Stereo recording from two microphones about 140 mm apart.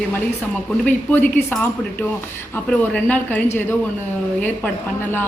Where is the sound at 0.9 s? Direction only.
15° left (ahead or behind).